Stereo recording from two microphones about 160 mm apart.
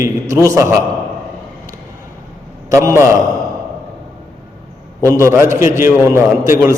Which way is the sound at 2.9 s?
20° right (ahead or behind).